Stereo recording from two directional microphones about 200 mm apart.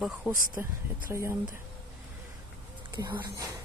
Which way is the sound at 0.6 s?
10° right (ahead or behind).